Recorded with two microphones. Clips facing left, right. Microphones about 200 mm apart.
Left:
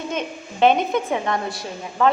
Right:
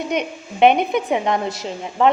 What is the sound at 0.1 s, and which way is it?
A woman's voice, 15° right (ahead or behind).